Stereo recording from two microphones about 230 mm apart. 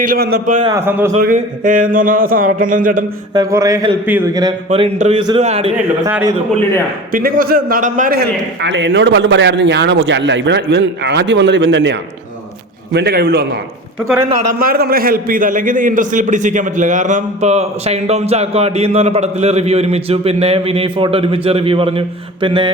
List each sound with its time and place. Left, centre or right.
0.1 s speech: right
0.6 s speech: centre
1.2 s speech: right
3.3 s a man's voice: centre
5.7 s speech: centre
7.1 s a man's voice: right
14.6 s a man's voice: right